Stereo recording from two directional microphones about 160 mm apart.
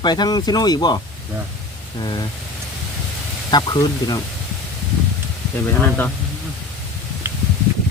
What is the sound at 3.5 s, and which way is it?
Speech, 25° left (ahead or behind).